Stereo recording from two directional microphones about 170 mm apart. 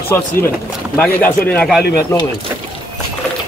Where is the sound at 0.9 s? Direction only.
10° left (ahead or behind).